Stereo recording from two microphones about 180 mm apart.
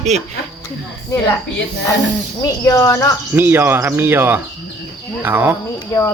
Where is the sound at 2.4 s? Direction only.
15° left (ahead or behind).